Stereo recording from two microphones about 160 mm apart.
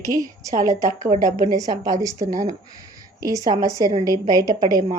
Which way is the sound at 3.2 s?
20° right (ahead or behind).